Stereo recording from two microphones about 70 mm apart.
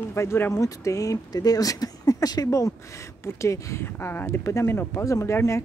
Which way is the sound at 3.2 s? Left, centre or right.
Left.